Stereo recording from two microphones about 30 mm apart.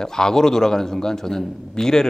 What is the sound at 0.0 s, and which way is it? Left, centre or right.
Speech, left.